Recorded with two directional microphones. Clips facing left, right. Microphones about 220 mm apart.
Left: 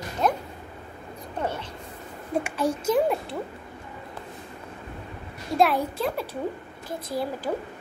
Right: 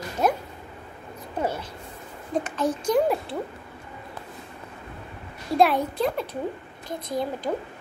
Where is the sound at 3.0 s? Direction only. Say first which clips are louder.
Right 1 dB; centre (ahead or behind).